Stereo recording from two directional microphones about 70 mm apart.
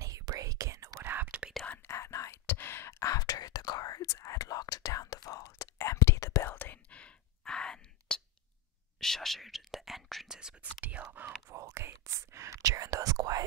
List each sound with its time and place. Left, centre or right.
0.0 s whispering: right
1.0 s whispering: right
1.9 s whispering: left
4.1 s whispering: left
5.6 s whispering: left
6.5 s whispering: left
7.0 s sigh: centre
9.0 s whispering: centre
10.6 s whispering: right
11.2 s whispering: right